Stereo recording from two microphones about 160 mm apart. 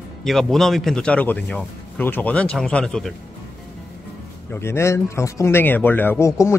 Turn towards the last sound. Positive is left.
turn(degrees=15)  # may be behind; listen again after turning